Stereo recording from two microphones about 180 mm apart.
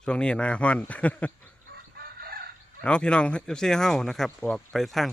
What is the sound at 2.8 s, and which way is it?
Speech, 5° left (ahead or behind).